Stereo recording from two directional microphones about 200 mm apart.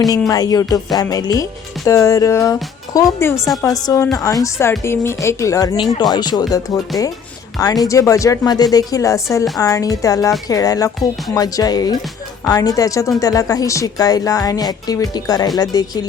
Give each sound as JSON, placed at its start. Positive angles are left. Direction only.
{"t": 0.3, "sound": "a woman's voice", "side_deg": 20}